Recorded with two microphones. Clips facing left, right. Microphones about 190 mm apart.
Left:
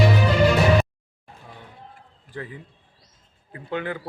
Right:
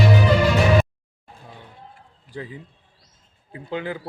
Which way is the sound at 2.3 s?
20° right (ahead or behind).